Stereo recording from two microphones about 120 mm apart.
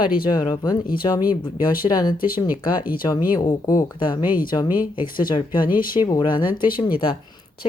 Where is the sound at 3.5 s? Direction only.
30° left (ahead or behind).